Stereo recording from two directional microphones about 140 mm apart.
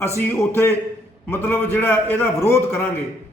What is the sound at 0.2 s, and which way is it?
A man's voice, 15° left (ahead or behind).